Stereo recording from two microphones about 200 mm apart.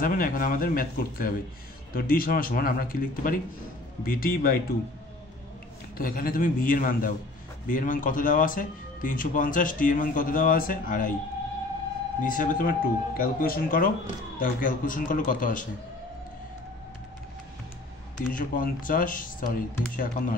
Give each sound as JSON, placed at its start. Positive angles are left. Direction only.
{"t": 0.0, "sound": "speech", "side_deg": 45}
{"t": 5.9, "sound": "speech", "side_deg": 45}
{"t": 12.2, "sound": "speech", "side_deg": 40}
{"t": 18.3, "sound": "speech", "side_deg": 45}